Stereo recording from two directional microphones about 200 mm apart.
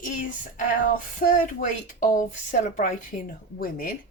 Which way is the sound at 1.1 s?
40° left (ahead or behind).